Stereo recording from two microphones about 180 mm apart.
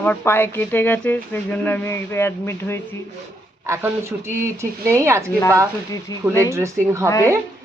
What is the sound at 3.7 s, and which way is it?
Speech, 15° right (ahead or behind).